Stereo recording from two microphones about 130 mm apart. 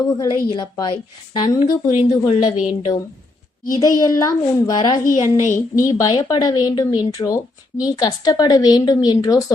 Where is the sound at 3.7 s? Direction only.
30° left (ahead or behind).